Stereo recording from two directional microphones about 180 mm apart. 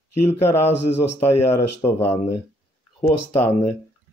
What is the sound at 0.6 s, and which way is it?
Speech, 35° left (ahead or behind).